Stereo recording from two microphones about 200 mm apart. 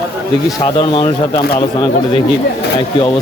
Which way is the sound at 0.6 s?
25° left (ahead or behind).